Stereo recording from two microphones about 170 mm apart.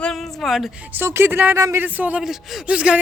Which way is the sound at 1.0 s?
15° right (ahead or behind).